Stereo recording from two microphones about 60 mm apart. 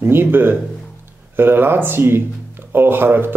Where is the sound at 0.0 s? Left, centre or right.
Right.